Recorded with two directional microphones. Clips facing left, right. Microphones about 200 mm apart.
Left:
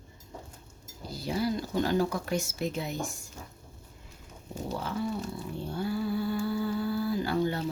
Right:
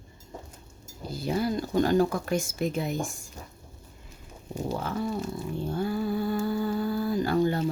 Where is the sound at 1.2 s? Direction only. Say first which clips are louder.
Right 2 dB; 50° right (ahead or behind).